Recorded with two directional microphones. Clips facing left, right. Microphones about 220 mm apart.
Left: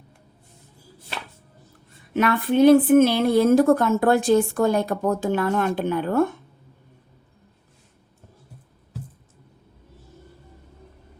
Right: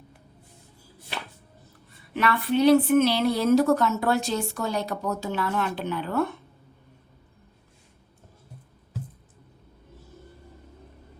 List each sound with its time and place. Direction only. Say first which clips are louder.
2.1 s a woman's voice: left 4 dB; 50° left (ahead or behind)